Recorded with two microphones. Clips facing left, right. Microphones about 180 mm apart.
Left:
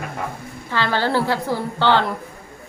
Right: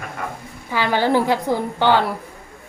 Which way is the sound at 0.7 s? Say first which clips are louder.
Right 3 dB; 15° right (ahead or behind).